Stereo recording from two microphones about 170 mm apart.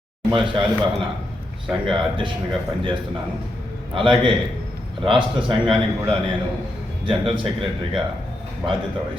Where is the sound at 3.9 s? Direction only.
30° right (ahead or behind).